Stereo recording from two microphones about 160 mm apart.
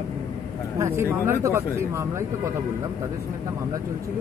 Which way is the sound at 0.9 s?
15° right (ahead or behind).